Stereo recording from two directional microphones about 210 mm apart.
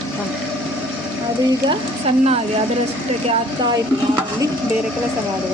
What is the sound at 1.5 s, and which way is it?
Speech, 25° right (ahead or behind).